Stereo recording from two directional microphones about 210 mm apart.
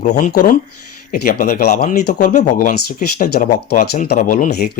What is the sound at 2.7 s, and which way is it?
Speech, 50° left (ahead or behind).